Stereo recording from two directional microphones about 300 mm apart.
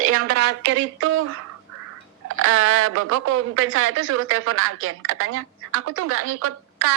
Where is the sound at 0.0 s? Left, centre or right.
Right.